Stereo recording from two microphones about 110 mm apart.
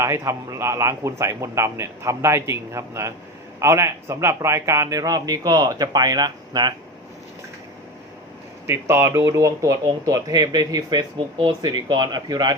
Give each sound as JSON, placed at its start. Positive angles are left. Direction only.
{"t": 0.0, "sound": "a man's voice", "side_deg": -25}
{"t": 8.6, "sound": "a man's voice", "side_deg": -25}